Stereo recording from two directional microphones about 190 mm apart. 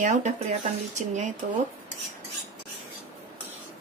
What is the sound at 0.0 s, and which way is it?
Speech, 40° right (ahead or behind).